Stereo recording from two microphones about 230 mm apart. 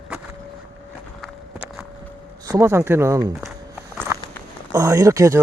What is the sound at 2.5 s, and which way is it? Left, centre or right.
Speech, centre.